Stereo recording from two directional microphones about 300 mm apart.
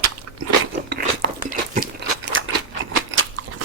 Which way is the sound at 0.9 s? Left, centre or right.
Right.